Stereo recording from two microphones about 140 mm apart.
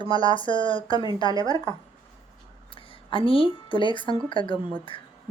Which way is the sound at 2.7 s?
40° left (ahead or behind).